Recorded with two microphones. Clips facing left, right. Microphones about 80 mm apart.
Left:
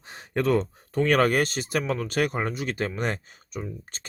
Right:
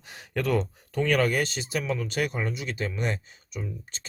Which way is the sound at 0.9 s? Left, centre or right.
Left.